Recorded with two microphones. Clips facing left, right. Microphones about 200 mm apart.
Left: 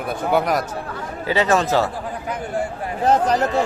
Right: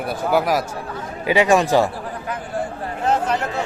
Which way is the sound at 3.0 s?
40° left (ahead or behind).